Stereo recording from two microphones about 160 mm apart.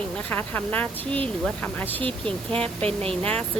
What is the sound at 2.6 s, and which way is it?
Speech, 35° right (ahead or behind).